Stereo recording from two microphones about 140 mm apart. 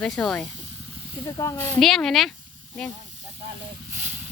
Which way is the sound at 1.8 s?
Centre (ahead or behind).